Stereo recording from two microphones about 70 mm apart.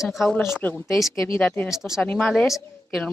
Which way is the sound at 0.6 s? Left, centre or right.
Left.